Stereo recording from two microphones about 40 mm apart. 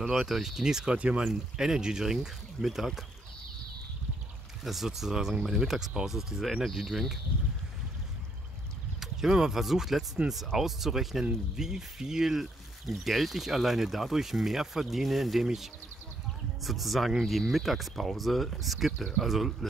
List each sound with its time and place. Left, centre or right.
0.2 s speech: centre
0.8 s speech: right
1.2 s speech: centre
4.6 s speech: centre
9.0 s speech: centre